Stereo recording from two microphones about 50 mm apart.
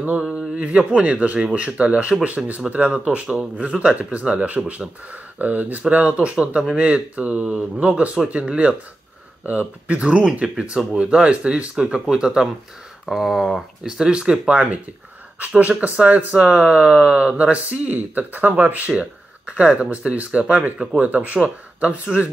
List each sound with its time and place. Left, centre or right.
0.2 s speech: right
18.9 s speech: right